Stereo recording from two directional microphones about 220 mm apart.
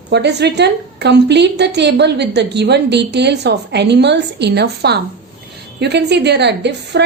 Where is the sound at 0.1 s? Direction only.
50° right (ahead or behind).